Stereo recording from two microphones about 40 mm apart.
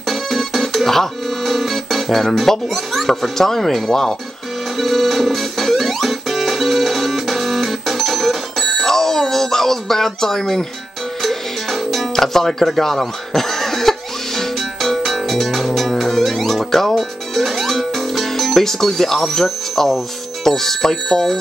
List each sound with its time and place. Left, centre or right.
0.1 s music: centre
3.2 s speech: centre
4.7 s music: centre
20.4 s speech: centre